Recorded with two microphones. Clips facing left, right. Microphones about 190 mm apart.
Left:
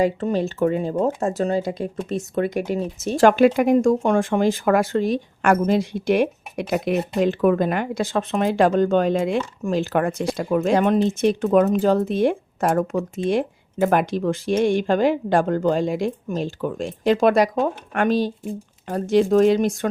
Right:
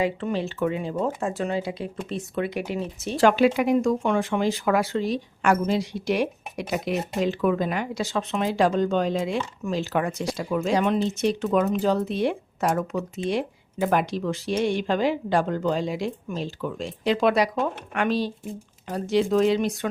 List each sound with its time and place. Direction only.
0.0 s speech: 45° left (ahead or behind)